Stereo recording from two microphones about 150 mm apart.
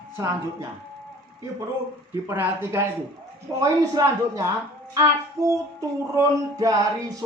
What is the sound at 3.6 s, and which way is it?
Child singing, 20° right (ahead or behind).